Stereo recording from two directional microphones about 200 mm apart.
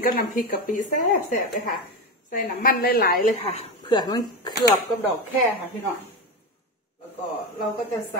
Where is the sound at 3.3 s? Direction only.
30° left (ahead or behind).